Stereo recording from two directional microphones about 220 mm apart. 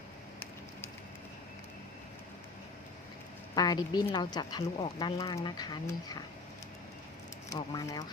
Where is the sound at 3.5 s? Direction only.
20° left (ahead or behind).